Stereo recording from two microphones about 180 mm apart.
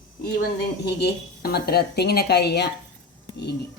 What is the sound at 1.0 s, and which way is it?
Speech, 60° left (ahead or behind).